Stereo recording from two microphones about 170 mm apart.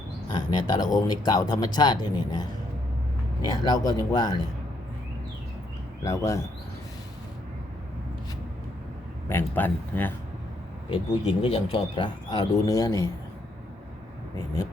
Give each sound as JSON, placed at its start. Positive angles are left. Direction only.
{"t": 0.3, "sound": "speech", "side_deg": 25}
{"t": 6.0, "sound": "speech", "side_deg": 20}
{"t": 9.3, "sound": "speech", "side_deg": 10}
{"t": 10.8, "sound": "speech", "side_deg": 30}
{"t": 14.3, "sound": "speech", "side_deg": 20}